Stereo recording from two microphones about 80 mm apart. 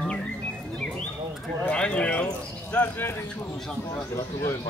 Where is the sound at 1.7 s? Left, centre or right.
Centre.